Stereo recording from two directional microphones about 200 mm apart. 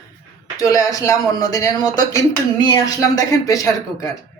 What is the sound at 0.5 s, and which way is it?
A man's voice, 15° left (ahead or behind).